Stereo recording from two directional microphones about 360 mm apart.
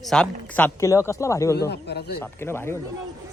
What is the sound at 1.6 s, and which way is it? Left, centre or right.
Speech, left.